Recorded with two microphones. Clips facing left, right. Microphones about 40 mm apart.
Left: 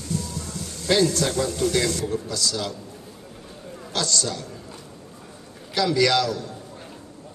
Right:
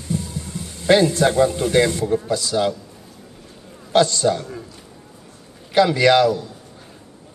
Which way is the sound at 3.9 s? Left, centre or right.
Right.